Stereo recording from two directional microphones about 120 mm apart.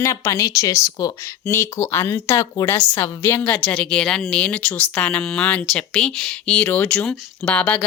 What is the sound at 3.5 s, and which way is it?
A woman's voice, 10° left (ahead or behind).